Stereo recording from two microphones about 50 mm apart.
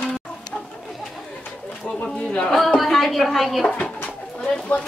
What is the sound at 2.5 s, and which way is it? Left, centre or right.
A woman's voice, centre.